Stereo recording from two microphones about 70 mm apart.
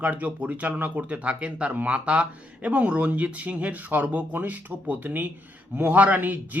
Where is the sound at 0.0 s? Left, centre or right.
Right.